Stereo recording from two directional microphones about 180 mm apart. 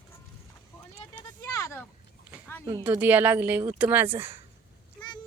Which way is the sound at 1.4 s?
15° left (ahead or behind).